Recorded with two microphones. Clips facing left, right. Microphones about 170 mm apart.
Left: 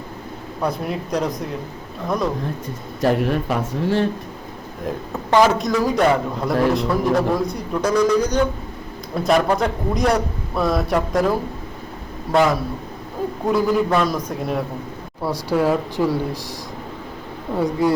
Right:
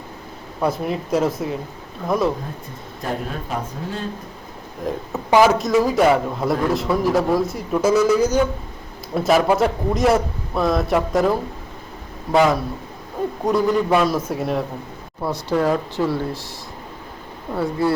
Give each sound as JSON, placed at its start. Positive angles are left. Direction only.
{"t": 0.6, "sound": "a man's voice", "side_deg": -5}
{"t": 3.0, "sound": "a man's voice", "side_deg": 75}
{"t": 4.9, "sound": "a man's voice", "side_deg": 0}
{"t": 15.2, "sound": "speech", "side_deg": 10}
{"t": 17.5, "sound": "speech", "side_deg": 15}